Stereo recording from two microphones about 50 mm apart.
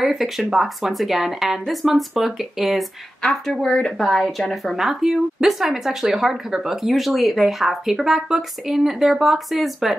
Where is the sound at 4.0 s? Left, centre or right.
Centre.